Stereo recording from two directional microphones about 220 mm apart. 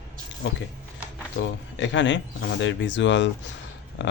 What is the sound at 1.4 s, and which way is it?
Speech, 55° left (ahead or behind).